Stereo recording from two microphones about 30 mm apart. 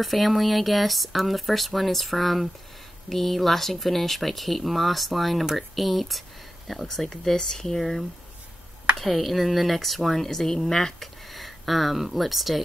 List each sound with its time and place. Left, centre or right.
0.0 s speech: centre
7.3 s speech: centre
11.3 s speech: centre